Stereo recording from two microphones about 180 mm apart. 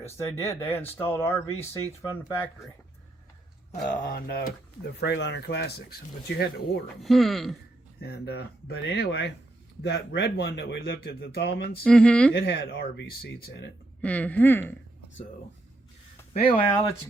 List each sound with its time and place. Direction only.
0.0 s speech: 15° left (ahead or behind)
3.8 s speech: 45° left (ahead or behind)
4.9 s speech: 70° left (ahead or behind)
7.0 s speech: centre (ahead or behind)
8.0 s speech: 65° left (ahead or behind)
11.8 s speech: 5° left (ahead or behind)
12.3 s speech: 65° left (ahead or behind)
14.0 s speech: 5° left (ahead or behind)
16.3 s speech: 30° left (ahead or behind)